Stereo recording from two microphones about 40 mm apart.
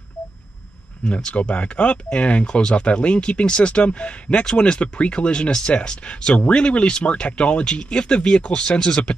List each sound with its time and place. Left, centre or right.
1.0 s speech: left